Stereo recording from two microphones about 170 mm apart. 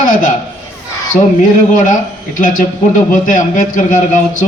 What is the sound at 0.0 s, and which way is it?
A man's voice, 50° left (ahead or behind).